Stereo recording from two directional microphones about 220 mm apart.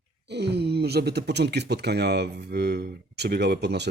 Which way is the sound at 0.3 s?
50° right (ahead or behind).